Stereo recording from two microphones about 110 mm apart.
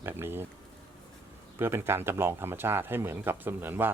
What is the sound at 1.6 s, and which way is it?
Speech, 20° right (ahead or behind).